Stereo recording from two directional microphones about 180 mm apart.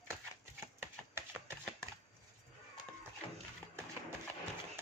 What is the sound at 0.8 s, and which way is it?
Chopping, 10° right (ahead or behind).